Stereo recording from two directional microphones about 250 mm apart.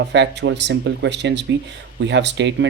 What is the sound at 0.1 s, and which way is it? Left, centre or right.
Speech, right.